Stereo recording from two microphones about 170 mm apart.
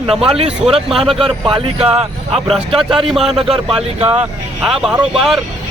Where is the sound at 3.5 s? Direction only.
35° right (ahead or behind).